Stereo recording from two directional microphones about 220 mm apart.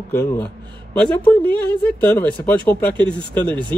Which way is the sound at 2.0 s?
10° left (ahead or behind).